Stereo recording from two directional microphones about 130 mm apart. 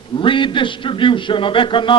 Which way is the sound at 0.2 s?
40° left (ahead or behind).